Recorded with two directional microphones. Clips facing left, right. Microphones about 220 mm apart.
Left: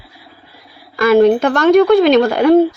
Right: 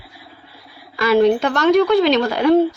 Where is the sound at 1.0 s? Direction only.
50° left (ahead or behind).